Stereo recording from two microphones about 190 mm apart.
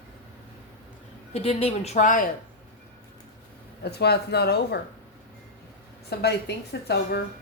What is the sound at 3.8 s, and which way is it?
Speech, 60° left (ahead or behind).